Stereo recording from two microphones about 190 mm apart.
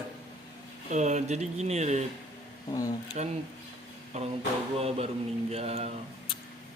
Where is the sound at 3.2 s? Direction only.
40° right (ahead or behind).